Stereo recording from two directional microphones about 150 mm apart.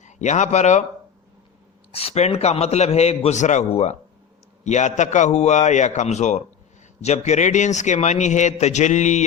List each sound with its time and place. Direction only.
0.0 s speech: 50° left (ahead or behind)
1.9 s a man's voice: 40° left (ahead or behind)